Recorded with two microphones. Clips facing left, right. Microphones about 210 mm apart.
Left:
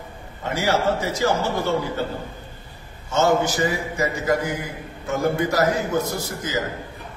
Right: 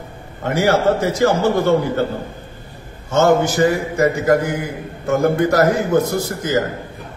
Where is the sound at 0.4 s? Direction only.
60° right (ahead or behind).